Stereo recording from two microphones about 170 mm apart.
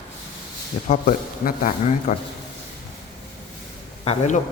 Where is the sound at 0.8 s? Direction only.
55° left (ahead or behind).